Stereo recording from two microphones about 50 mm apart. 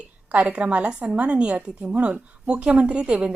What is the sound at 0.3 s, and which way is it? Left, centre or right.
A woman's voice, right.